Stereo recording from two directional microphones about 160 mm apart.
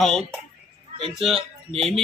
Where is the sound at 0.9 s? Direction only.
35° right (ahead or behind).